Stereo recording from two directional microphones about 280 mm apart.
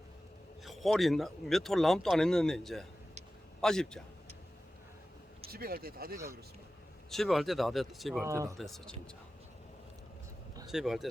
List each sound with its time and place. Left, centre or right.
0.6 s speech: centre
5.5 s speech: right
7.1 s speech: centre
8.3 s speech: centre
8.5 s speech: centre
10.7 s speech: centre